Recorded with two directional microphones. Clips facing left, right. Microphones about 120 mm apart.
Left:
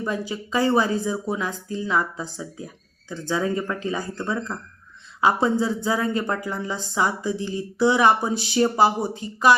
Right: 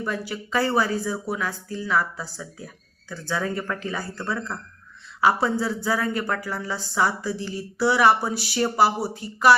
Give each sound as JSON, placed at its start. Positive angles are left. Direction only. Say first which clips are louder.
{"t": 0.0, "sound": "speech", "louder": "left 2 dB", "side_deg": 20}